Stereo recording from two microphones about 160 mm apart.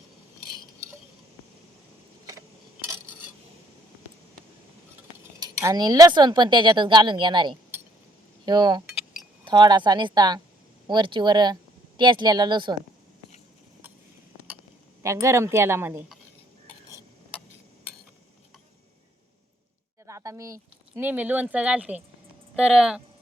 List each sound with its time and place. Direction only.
5.4 s speech: 20° right (ahead or behind)
15.0 s speech: 20° right (ahead or behind)
20.1 s speech: 20° right (ahead or behind)